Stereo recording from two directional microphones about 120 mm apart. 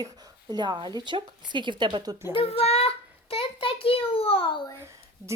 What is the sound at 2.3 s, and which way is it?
A child's voice, 50° left (ahead or behind).